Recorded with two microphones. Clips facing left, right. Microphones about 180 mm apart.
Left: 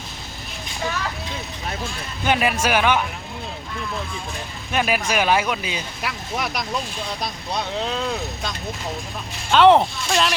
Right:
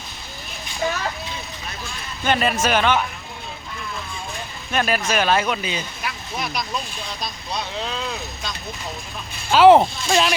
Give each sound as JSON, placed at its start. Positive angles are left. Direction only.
{"t": 2.2, "sound": "speech", "side_deg": 10}
{"t": 4.7, "sound": "speech", "side_deg": 10}
{"t": 6.0, "sound": "speech", "side_deg": 70}
{"t": 9.5, "sound": "speech", "side_deg": -5}